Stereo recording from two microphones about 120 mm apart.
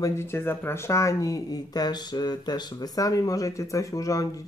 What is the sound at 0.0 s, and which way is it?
Speech, 20° left (ahead or behind).